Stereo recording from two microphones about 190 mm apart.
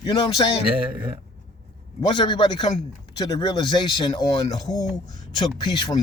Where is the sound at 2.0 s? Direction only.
25° left (ahead or behind).